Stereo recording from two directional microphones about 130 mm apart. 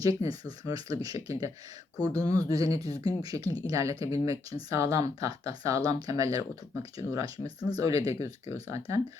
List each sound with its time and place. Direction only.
0.0 s speech: 25° right (ahead or behind)